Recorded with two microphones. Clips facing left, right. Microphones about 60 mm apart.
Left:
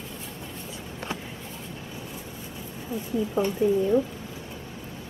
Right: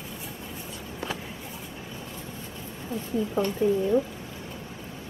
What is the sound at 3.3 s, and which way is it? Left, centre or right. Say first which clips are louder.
Speech: left 1 dB; centre.